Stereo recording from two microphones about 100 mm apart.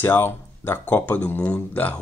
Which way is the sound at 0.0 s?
20° left (ahead or behind).